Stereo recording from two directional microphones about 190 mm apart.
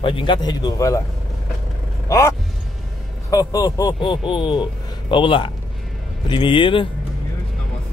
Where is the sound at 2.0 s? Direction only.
15° left (ahead or behind).